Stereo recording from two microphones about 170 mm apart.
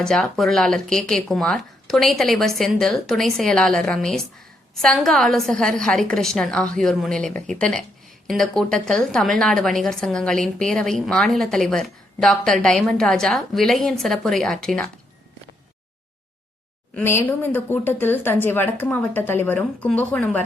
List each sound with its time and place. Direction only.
0.0 s a woman's voice: 5° left (ahead or behind)
16.9 s speech: 15° left (ahead or behind)